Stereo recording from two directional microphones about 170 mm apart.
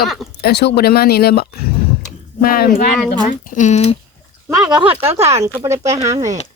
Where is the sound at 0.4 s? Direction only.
70° left (ahead or behind).